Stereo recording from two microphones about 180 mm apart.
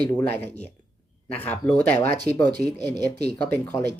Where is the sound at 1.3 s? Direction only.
10° left (ahead or behind).